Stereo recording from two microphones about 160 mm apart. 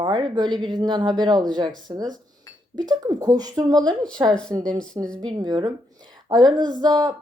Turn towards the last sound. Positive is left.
turn(degrees=-25)  # may be behind; listen again after turning